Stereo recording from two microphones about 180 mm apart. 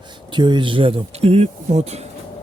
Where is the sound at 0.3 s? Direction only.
25° right (ahead or behind).